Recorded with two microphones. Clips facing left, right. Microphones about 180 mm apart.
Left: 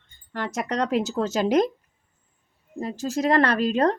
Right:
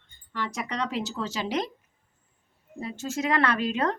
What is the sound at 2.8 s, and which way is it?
Speech, 35° left (ahead or behind).